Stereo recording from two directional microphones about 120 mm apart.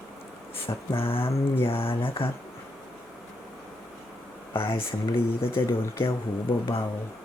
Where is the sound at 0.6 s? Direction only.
50° left (ahead or behind).